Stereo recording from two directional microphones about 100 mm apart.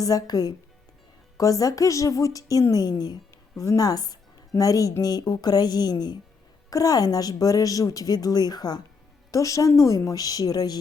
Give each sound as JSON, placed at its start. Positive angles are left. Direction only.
{"t": 0.0, "sound": "speech", "side_deg": 35}